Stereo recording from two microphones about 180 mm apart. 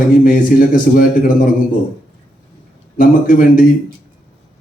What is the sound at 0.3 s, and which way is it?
Speech, 50° left (ahead or behind).